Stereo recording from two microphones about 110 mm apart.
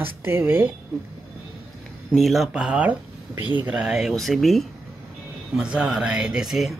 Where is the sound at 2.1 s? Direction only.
Centre (ahead or behind).